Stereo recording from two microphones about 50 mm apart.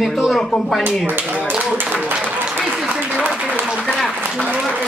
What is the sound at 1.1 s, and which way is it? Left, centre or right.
Speech, right.